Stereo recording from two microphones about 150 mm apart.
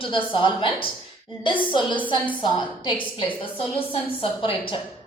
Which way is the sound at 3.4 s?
40° left (ahead or behind).